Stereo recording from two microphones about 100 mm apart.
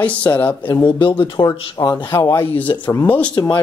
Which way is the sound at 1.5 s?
45° left (ahead or behind).